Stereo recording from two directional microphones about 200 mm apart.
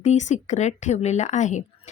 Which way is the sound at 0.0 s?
35° left (ahead or behind).